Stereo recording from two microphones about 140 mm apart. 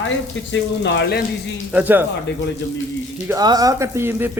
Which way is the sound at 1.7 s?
10° right (ahead or behind).